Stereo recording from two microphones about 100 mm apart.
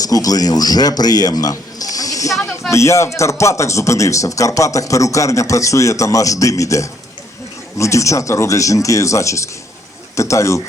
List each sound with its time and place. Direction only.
0.0 s a man's voice: 40° left (ahead or behind)
2.4 s a man's voice: 25° left (ahead or behind)